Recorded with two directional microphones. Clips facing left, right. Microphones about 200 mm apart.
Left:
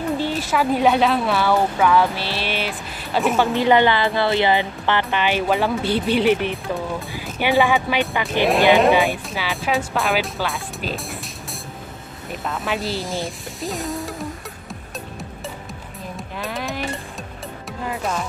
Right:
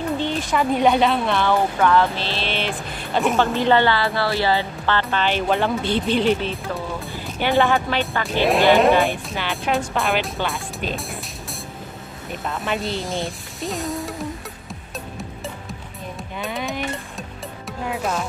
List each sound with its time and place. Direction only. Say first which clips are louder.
0.2 s speech: even; 5° left (ahead or behind)
3.5 s speech: left 2 dB; 15° left (ahead or behind)
7.5 s speech: even; centre (ahead or behind)
7.9 s speech: left 2 dB; 15° left (ahead or behind)
8.5 s speech: even; centre (ahead or behind)
12.3 s speech: even; centre (ahead or behind)
16.3 s music: right 1 dB; centre (ahead or behind)
17.8 s speech: right 1 dB; centre (ahead or behind)